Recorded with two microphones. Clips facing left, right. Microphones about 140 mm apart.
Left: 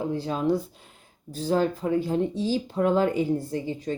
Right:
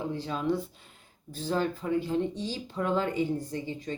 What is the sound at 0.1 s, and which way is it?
Speech, 40° left (ahead or behind).